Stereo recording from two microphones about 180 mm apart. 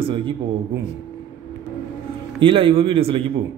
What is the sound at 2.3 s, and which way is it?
Speech, 30° right (ahead or behind).